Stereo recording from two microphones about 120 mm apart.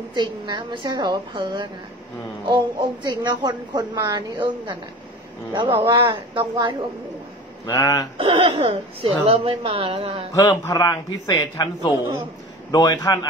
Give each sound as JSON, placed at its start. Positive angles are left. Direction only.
{"t": 0.1, "sound": "a woman's voice", "side_deg": -35}
{"t": 7.6, "sound": "a man's voice", "side_deg": 30}
{"t": 8.2, "sound": "a woman's voice", "side_deg": -50}
{"t": 10.3, "sound": "a man's voice", "side_deg": 20}